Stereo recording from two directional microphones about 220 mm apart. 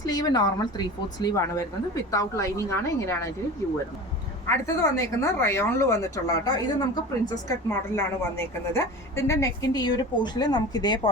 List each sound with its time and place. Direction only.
0.0 s a woman's voice: 15° left (ahead or behind)
4.4 s a woman's voice: 15° left (ahead or behind)